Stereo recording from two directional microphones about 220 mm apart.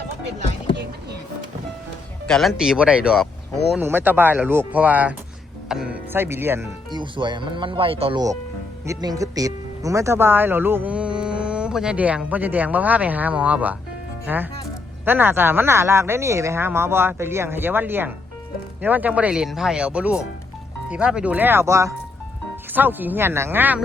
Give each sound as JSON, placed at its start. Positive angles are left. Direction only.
{"t": 2.2, "sound": "speech", "side_deg": 0}
{"t": 7.0, "sound": "speech", "side_deg": -20}